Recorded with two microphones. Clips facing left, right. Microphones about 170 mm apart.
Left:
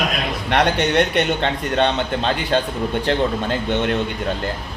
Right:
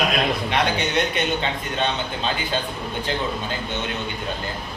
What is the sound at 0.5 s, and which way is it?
Speech, 70° left (ahead or behind).